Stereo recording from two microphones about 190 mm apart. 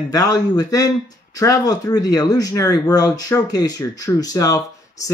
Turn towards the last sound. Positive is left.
turn(degrees=15)  # may be behind; listen again after turning